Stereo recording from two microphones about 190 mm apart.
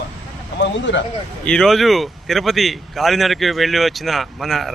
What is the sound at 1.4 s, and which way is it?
Speech, 5° left (ahead or behind).